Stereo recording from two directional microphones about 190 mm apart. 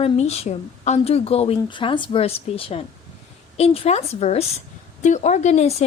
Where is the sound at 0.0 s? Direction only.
35° left (ahead or behind).